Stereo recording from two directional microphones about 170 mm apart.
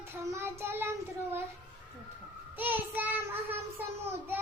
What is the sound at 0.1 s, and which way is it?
Child singing, 15° right (ahead or behind).